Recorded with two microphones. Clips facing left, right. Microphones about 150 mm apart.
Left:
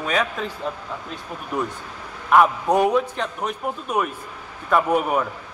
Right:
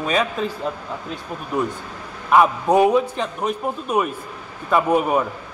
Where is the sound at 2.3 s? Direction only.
10° right (ahead or behind).